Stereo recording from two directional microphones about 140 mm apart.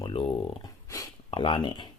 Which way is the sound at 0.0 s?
40° left (ahead or behind).